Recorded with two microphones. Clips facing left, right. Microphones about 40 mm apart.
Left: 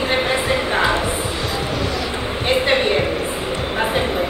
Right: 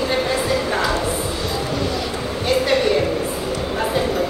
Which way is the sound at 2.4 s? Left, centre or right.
Left.